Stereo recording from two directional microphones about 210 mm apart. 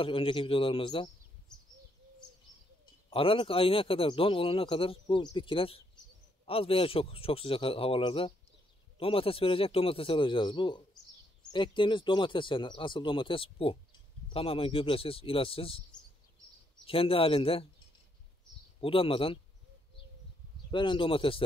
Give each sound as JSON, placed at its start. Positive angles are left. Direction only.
{"t": 0.0, "sound": "a man's voice", "side_deg": 25}
{"t": 3.1, "sound": "a man's voice", "side_deg": 25}
{"t": 16.8, "sound": "a man's voice", "side_deg": 25}
{"t": 18.8, "sound": "a man's voice", "side_deg": 25}
{"t": 20.7, "sound": "a man's voice", "side_deg": 25}